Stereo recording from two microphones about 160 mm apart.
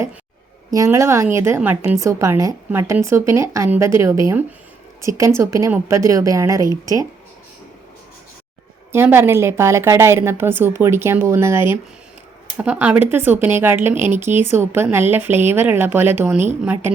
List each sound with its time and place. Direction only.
0.7 s a woman's voice: 20° right (ahead or behind)
8.9 s a woman's voice: 15° right (ahead or behind)